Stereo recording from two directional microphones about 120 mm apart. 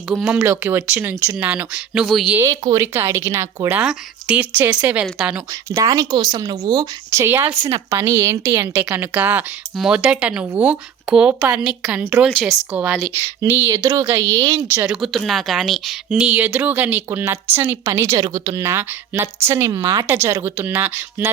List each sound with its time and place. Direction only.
0.1 s speech: 10° right (ahead or behind)
2.3 s speech: 25° right (ahead or behind)
3.8 s speech: 10° right (ahead or behind)
5.5 s speech: 25° right (ahead or behind)
14.8 s speech: centre (ahead or behind)